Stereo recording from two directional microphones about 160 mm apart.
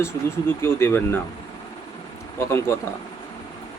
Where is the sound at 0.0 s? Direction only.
15° left (ahead or behind).